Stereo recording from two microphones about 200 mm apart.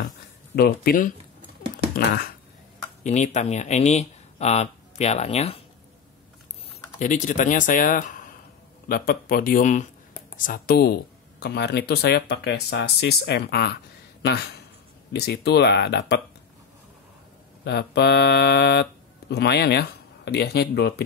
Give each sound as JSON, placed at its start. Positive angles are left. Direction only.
{"t": 0.6, "sound": "speech", "side_deg": 45}
{"t": 3.0, "sound": "speech", "side_deg": 35}
{"t": 7.0, "sound": "speech", "side_deg": 40}
{"t": 17.6, "sound": "speech", "side_deg": 55}